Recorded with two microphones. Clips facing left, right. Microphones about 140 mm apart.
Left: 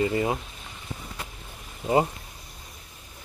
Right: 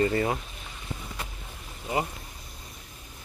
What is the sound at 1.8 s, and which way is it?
Speech, 30° left (ahead or behind).